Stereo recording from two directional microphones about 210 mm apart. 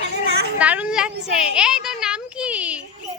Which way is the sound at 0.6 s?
5° right (ahead or behind).